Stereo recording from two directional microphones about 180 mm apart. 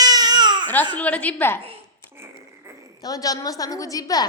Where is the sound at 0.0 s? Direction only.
20° right (ahead or behind).